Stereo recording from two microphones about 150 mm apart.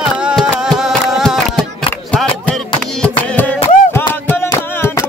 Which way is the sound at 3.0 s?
10° left (ahead or behind).